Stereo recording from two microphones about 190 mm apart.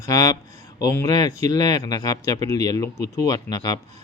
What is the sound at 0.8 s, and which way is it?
Speech, 20° left (ahead or behind).